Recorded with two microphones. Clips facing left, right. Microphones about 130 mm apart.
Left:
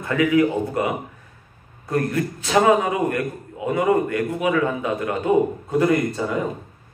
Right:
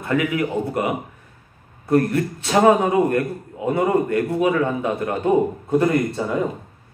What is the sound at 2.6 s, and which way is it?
A man's voice, 25° right (ahead or behind).